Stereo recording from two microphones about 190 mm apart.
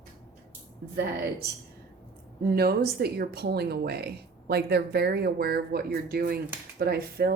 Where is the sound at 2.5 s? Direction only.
55° right (ahead or behind).